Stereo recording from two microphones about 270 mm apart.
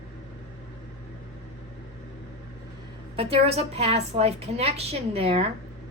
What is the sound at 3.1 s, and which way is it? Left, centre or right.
A woman's voice, right.